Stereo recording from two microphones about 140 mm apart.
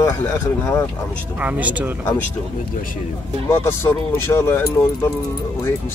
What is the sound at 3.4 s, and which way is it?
Speech, 20° left (ahead or behind).